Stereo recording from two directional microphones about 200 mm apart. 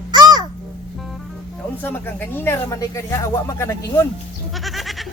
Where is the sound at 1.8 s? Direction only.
10° left (ahead or behind).